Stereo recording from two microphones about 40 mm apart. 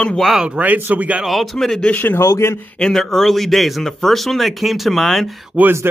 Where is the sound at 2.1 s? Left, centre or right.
Left.